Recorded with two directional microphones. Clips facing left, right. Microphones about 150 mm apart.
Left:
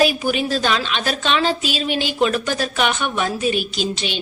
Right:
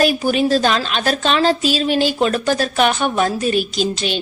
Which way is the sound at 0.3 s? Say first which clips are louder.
Right 4 dB; 40° right (ahead or behind).